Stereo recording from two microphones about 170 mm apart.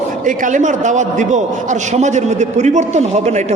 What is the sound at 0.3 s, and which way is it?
A man's voice, 50° right (ahead or behind).